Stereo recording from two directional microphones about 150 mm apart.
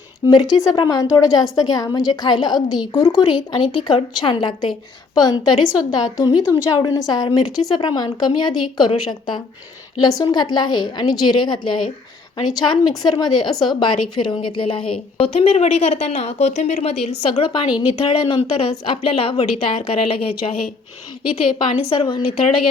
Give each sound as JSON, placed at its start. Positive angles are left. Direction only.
{"t": 0.6, "sound": "a woman's voice", "side_deg": 25}
{"t": 21.8, "sound": "a woman's voice", "side_deg": 35}